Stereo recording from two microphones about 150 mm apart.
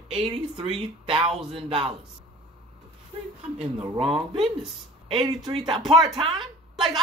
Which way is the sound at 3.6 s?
40° right (ahead or behind).